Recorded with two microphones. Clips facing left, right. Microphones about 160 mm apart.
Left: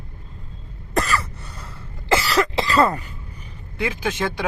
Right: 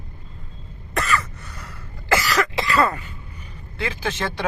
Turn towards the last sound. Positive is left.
turn(degrees=10)  # may be behind; listen again after turning